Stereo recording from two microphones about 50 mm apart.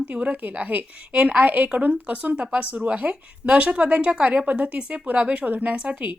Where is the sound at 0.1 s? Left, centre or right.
Right.